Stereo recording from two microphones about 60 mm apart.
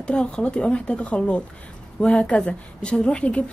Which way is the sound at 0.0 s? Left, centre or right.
Centre.